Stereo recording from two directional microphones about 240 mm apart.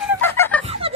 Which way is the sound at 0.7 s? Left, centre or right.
Right.